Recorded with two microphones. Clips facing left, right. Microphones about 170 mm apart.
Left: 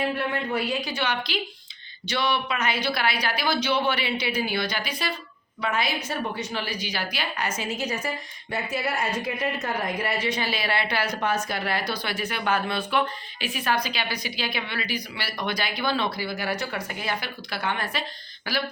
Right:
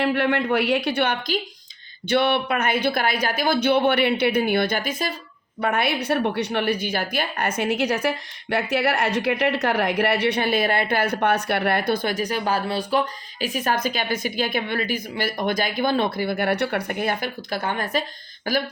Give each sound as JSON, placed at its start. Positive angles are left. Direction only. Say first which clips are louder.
{"t": 0.0, "sound": "a woman's voice", "louder": "right 6 dB", "side_deg": -70}